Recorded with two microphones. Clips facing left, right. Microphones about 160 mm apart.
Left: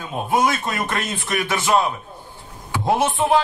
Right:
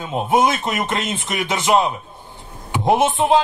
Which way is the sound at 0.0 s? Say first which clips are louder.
Right 3 dB; 20° right (ahead or behind).